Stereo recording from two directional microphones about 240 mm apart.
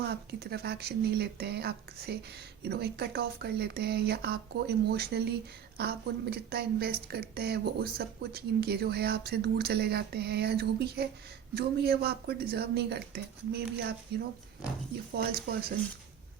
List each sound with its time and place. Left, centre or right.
0.0 s speech: right
15.1 s speech: right